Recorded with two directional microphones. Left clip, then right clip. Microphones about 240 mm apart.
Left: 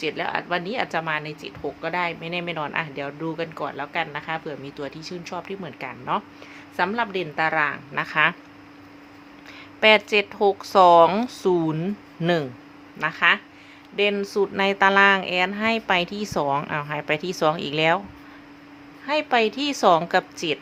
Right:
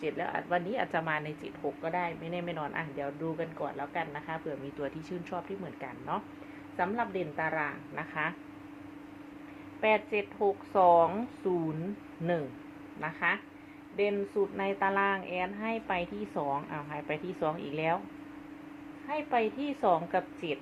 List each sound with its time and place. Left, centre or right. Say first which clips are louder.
0.0 s speech: left 8 dB; left
1.8 s speech: left 9 dB; left
9.8 s speech: left 11 dB; left
13.0 s speech: left 12 dB; left
19.0 s speech: left 10 dB; left